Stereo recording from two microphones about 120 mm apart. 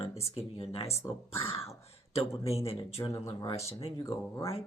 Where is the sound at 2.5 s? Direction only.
55° left (ahead or behind).